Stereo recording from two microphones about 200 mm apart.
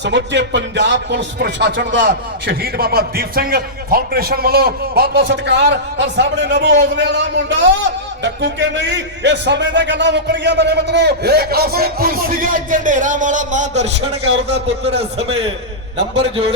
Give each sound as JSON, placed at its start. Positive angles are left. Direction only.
{"t": 0.0, "sound": "a man's voice", "side_deg": -60}